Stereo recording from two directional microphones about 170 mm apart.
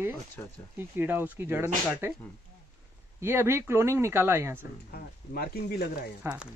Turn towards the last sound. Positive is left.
turn(degrees=65)  # may be behind; listen again after turning